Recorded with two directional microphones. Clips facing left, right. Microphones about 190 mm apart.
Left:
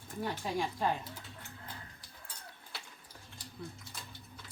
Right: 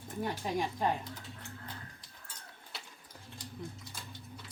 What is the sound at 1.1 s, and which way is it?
Speech, 10° left (ahead or behind).